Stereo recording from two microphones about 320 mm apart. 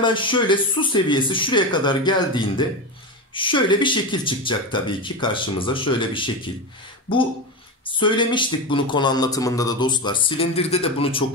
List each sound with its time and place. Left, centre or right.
0.0 s a man's voice: centre
7.8 s a man's voice: centre